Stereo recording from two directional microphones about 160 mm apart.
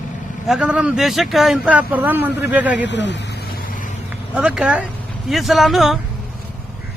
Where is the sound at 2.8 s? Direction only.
90° left.